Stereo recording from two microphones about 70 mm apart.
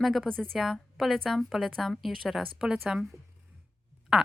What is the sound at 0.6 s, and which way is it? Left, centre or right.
A woman's voice, centre.